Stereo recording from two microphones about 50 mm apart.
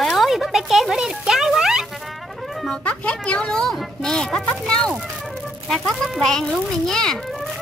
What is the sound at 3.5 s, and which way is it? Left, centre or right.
Speech, centre.